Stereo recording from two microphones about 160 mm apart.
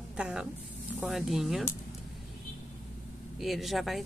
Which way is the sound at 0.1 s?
5° right (ahead or behind).